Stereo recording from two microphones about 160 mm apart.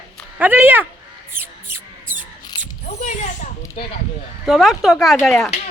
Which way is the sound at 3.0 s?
50° left (ahead or behind).